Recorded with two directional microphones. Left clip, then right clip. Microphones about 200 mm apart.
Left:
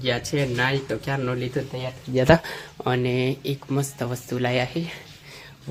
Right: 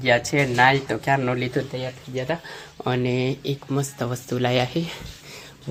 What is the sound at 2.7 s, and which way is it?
Speech, centre (ahead or behind).